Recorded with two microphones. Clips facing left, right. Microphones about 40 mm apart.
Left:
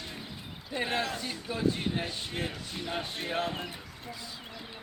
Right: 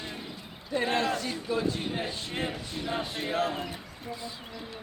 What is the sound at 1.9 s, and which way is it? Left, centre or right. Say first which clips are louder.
Speech: right 1 dB; right.